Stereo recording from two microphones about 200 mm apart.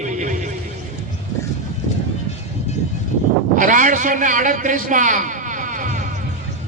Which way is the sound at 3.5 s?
40° right (ahead or behind).